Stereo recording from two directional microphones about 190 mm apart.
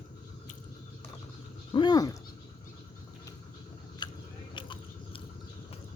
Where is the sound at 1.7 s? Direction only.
25° left (ahead or behind).